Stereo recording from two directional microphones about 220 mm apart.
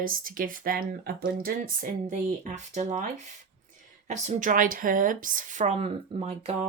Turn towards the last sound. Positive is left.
turn(degrees=-25)  # may be behind; listen again after turning